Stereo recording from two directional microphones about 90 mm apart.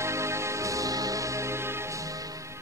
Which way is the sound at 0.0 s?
30° right (ahead or behind).